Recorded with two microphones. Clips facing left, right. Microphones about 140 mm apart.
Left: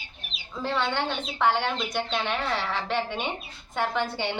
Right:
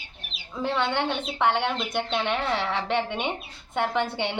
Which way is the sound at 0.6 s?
20° right (ahead or behind).